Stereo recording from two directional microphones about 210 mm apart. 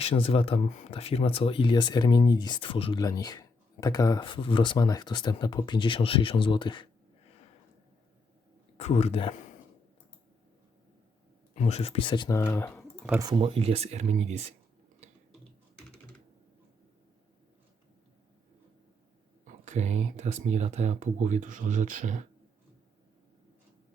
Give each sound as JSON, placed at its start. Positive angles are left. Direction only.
{"t": 0.0, "sound": "speech", "side_deg": 30}
{"t": 8.8, "sound": "speech", "side_deg": 30}
{"t": 11.5, "sound": "speech", "side_deg": 30}
{"t": 13.1, "sound": "speech", "side_deg": -15}
{"t": 19.5, "sound": "speech", "side_deg": -35}